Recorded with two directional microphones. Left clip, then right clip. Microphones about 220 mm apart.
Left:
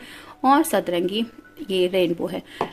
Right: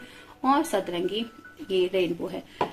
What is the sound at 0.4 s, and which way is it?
Speech, 50° left (ahead or behind).